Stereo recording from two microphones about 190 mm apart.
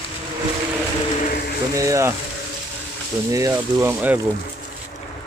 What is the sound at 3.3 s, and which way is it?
Speech, 15° right (ahead or behind).